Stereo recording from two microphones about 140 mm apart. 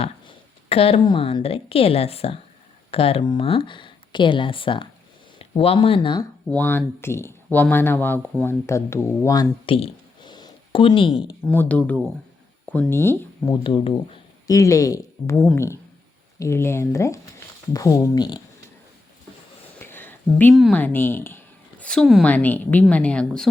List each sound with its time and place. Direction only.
0.0 s speech: 45° left (ahead or behind)
6.5 s speech: 15° left (ahead or behind)
9.6 s a sound: 40° left (ahead or behind)
11.4 s speech: 10° left (ahead or behind)
13.5 s speech: 35° left (ahead or behind)
14.4 s speech: 25° left (ahead or behind)
19.8 s a sound: 15° left (ahead or behind)
20.5 s speech: centre (ahead or behind)
20.7 s a woman's voice: 15° left (ahead or behind)